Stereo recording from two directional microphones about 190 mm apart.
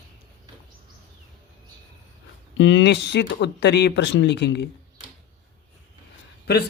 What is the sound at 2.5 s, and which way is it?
Speech, 75° left (ahead or behind).